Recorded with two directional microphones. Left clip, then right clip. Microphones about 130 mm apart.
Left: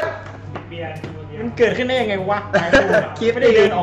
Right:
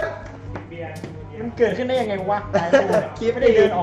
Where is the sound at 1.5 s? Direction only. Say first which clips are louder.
Left 3 dB; 15° left (ahead or behind).